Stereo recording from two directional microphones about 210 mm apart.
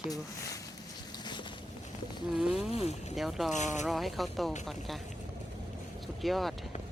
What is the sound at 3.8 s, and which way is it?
Speech, centre (ahead or behind).